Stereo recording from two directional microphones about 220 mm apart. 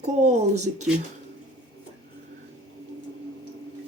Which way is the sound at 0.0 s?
30° right (ahead or behind).